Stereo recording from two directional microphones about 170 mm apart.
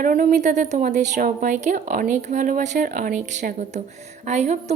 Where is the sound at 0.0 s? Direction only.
55° right (ahead or behind).